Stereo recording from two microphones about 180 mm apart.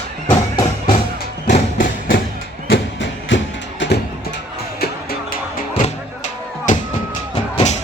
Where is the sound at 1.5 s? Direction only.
50° left (ahead or behind).